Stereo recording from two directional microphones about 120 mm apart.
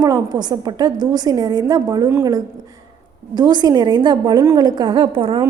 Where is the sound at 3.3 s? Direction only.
35° right (ahead or behind).